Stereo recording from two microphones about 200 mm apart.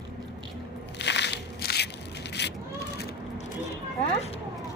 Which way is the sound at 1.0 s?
60° left (ahead or behind).